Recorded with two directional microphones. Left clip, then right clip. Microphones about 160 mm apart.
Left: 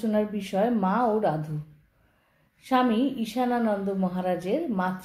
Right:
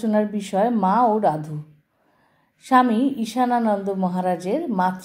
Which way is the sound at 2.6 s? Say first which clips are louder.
Right 6 dB; 25° right (ahead or behind).